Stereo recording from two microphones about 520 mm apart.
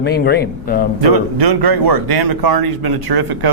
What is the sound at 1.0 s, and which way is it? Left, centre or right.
Speech, right.